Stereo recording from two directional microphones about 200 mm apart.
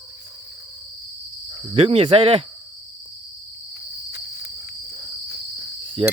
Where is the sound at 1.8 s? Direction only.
30° right (ahead or behind).